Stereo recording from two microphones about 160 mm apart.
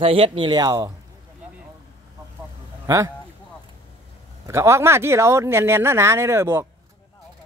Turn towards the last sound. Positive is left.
turn(degrees=-20)  # may be behind; listen again after turning